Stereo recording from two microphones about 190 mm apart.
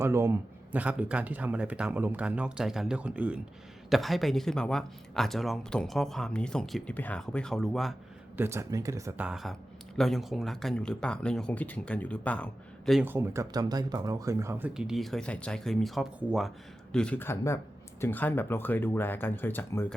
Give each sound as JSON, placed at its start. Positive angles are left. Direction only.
{"t": 0.0, "sound": "speech", "side_deg": -15}
{"t": 8.4, "sound": "speech", "side_deg": -15}
{"t": 13.1, "sound": "speech", "side_deg": -10}
{"t": 14.7, "sound": "speech", "side_deg": -5}